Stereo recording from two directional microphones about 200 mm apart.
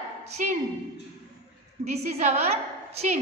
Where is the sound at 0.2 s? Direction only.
35° right (ahead or behind).